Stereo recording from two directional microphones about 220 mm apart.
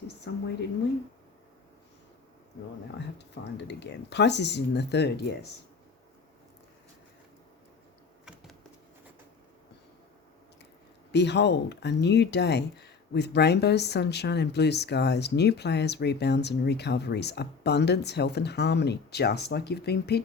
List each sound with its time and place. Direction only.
0.3 s a woman's voice: 50° left (ahead or behind)
3.2 s speech: 50° left (ahead or behind)
8.2 s a sound: 5° right (ahead or behind)
11.1 s speech: 50° left (ahead or behind)